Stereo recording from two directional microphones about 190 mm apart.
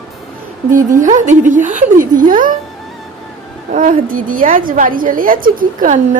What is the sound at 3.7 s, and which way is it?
A woman's voice, 45° right (ahead or behind).